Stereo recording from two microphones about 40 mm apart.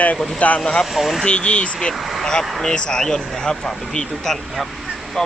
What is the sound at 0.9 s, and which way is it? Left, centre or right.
Speech, centre.